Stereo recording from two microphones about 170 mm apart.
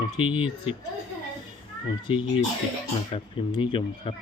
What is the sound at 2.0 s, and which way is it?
Speech, 30° left (ahead or behind).